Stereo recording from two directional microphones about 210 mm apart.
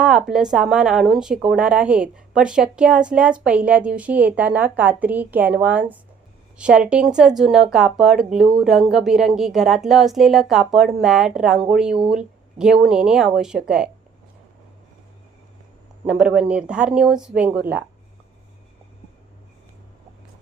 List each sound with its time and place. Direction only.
0.0 s speech: 5° right (ahead or behind)
16.0 s speech: 5° right (ahead or behind)